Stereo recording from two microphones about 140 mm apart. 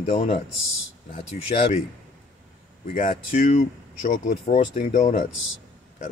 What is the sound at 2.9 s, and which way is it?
Speech, 70° left (ahead or behind).